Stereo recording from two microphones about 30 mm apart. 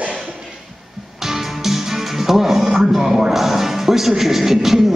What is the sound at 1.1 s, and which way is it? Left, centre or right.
Music, centre.